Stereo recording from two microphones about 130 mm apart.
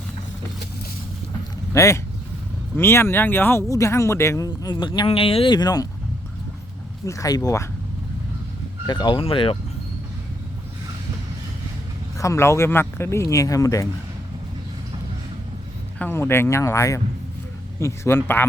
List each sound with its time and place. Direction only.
1.7 s speech: 25° left (ahead or behind)
7.0 s speech: 25° left (ahead or behind)
8.9 s speech: 35° left (ahead or behind)
12.1 s speech: 25° left (ahead or behind)
16.0 s speech: 15° left (ahead or behind)